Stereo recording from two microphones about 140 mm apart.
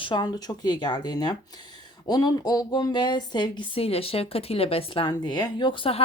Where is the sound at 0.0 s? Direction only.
30° left (ahead or behind).